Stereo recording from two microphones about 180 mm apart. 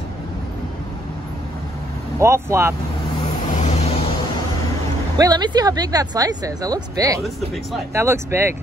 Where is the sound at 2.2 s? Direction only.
15° right (ahead or behind).